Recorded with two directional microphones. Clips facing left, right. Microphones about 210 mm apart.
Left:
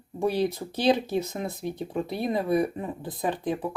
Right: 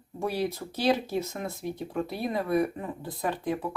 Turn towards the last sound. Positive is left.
turn(degrees=20)  # may be behind; listen again after turning